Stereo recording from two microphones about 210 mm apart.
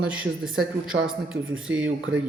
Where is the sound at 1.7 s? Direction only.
60° right (ahead or behind).